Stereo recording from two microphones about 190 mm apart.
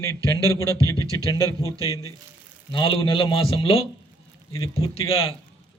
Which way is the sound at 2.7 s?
25° left (ahead or behind).